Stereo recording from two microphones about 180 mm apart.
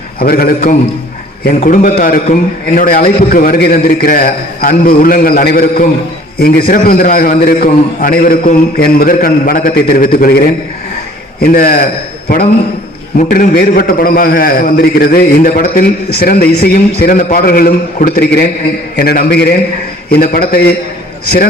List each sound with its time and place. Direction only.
0.3 s a man's voice: 55° left (ahead or behind)
13.1 s a man's voice: 50° left (ahead or behind)